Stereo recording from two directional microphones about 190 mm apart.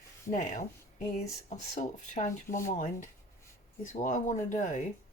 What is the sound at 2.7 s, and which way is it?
Speech, 40° left (ahead or behind).